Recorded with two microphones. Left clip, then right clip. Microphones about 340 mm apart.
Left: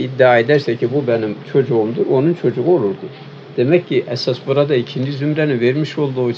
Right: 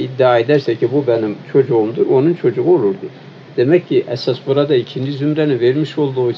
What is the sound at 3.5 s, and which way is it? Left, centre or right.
Speech, centre.